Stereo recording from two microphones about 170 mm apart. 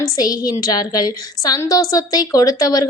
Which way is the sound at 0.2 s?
20° left (ahead or behind).